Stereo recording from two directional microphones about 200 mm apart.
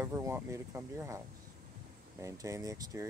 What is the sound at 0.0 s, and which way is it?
Speech, 15° right (ahead or behind).